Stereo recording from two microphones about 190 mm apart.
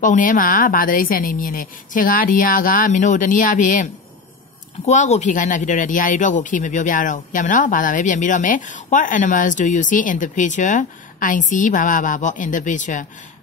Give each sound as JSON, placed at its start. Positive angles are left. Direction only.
{"t": 0.0, "sound": "speech", "side_deg": 45}